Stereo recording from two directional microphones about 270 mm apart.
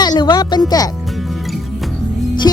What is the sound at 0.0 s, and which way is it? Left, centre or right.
Speech, centre.